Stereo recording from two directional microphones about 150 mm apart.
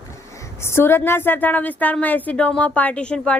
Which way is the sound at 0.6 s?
15° left (ahead or behind).